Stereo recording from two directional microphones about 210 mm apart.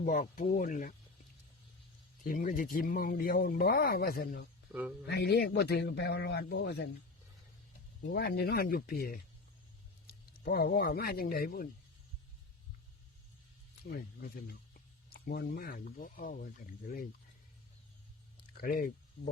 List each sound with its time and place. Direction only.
0.0 s speech: 40° left (ahead or behind)
2.2 s speech: 40° left (ahead or behind)
4.7 s speech: 5° right (ahead or behind)
5.0 s speech: 50° left (ahead or behind)
8.0 s speech: 45° left (ahead or behind)
10.4 s speech: 45° left (ahead or behind)
13.9 s speech: 45° left (ahead or behind)
18.5 s speech: 45° left (ahead or behind)